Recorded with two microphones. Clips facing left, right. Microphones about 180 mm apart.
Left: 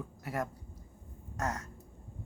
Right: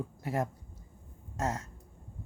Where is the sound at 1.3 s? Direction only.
25° right (ahead or behind).